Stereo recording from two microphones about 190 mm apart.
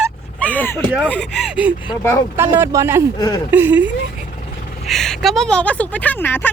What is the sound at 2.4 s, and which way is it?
Speech, 15° right (ahead or behind).